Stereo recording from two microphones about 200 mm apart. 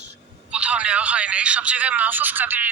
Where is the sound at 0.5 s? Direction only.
5° right (ahead or behind).